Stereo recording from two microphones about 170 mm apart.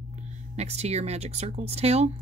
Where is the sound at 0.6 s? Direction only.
40° right (ahead or behind).